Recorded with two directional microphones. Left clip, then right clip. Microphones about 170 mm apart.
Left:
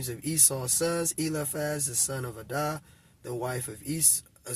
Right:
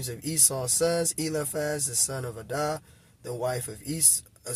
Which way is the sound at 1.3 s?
30° right (ahead or behind).